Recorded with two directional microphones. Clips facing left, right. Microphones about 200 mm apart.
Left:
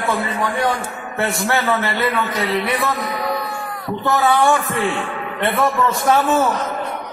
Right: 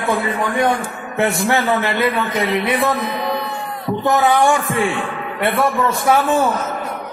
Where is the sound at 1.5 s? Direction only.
15° right (ahead or behind).